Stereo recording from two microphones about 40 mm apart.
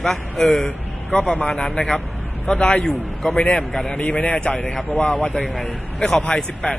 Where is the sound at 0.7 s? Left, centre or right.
Left.